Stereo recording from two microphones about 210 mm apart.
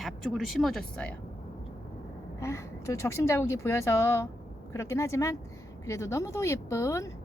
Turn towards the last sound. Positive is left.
turn(degrees=15)  # may be behind; listen again after turning